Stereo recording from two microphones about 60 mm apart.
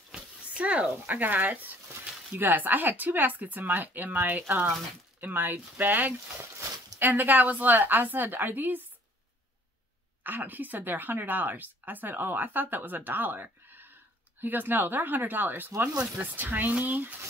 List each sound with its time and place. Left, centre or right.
0.1 s a sound: centre
1.0 s a woman's voice: right
10.2 s a woman's voice: right